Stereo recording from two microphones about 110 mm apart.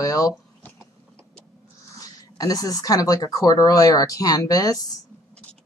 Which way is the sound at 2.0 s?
35° left (ahead or behind).